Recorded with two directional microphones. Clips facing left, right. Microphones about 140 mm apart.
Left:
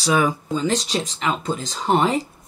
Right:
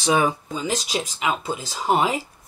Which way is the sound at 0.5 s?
10° right (ahead or behind).